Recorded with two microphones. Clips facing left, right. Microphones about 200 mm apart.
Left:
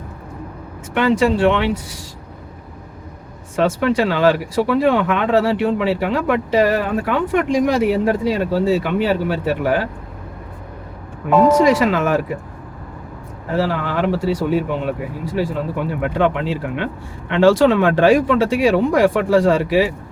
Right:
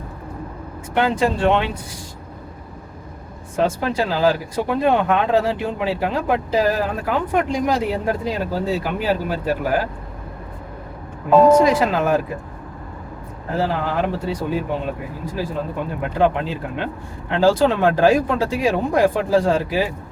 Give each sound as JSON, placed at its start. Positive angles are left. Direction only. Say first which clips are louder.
{"t": 0.9, "sound": "speech", "louder": "left 3 dB", "side_deg": 75}
{"t": 3.5, "sound": "speech", "louder": "left 4 dB", "side_deg": 70}
{"t": 11.6, "sound": "speech", "louder": "left 2 dB", "side_deg": 80}
{"t": 13.6, "sound": "speech", "louder": "left 2 dB", "side_deg": 70}